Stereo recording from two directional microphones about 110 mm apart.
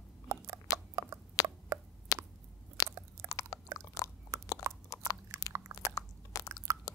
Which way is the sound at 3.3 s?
30° left (ahead or behind).